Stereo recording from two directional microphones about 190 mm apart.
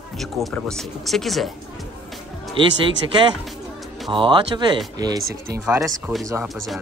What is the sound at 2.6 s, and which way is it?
Speech, 25° right (ahead or behind).